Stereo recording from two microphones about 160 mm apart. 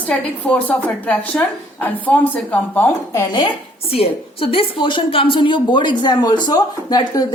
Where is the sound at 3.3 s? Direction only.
35° left (ahead or behind).